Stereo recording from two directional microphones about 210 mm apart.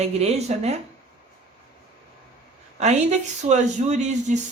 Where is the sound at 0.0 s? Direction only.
30° right (ahead or behind).